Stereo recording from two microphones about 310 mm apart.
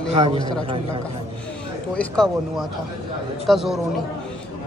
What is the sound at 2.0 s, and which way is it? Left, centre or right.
Speech, centre.